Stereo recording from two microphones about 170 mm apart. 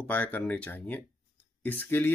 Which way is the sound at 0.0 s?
10° left (ahead or behind).